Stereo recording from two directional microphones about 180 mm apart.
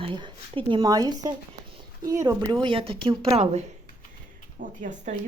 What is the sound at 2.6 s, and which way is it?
A woman's voice, 30° right (ahead or behind).